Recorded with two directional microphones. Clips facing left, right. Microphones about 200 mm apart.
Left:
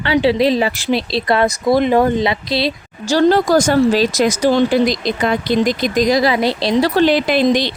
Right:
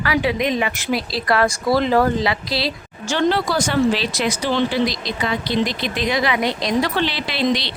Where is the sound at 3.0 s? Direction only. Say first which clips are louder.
Left 6 dB; 35° left (ahead or behind).